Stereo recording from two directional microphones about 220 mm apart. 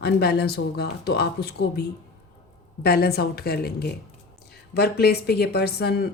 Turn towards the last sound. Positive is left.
turn(degrees=45)  # may be behind; listen again after turning